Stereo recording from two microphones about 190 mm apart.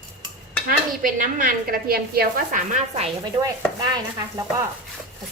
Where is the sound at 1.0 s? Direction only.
45° right (ahead or behind).